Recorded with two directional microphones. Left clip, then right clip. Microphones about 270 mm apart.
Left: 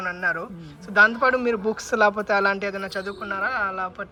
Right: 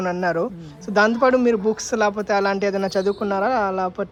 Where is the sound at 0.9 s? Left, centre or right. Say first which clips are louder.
Right 1 dB; centre.